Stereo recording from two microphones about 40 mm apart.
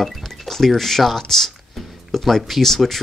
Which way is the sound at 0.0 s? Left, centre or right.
Centre.